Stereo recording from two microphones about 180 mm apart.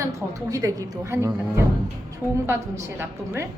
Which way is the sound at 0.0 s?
20° right (ahead or behind).